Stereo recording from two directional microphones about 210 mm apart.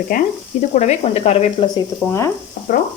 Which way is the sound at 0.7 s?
35° left (ahead or behind).